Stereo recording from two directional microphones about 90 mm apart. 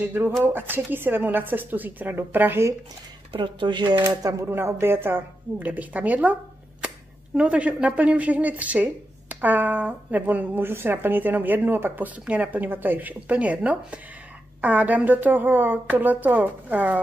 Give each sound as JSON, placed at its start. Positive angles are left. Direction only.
{"t": 0.0, "sound": "speech", "side_deg": -25}
{"t": 3.3, "sound": "speech", "side_deg": -65}
{"t": 7.3, "sound": "speech", "side_deg": -15}